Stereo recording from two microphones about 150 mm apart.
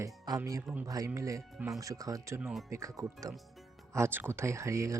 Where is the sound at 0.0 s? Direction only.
20° right (ahead or behind).